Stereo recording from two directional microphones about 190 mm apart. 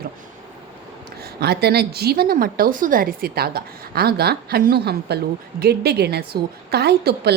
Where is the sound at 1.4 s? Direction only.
55° right (ahead or behind).